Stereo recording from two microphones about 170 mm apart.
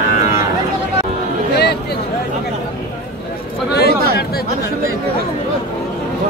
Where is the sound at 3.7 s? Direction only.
70° left (ahead or behind).